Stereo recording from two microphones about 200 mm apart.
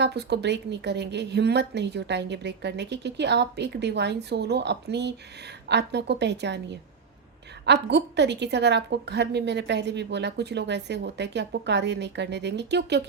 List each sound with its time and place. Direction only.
0.0 s a woman's voice: 55° right (ahead or behind)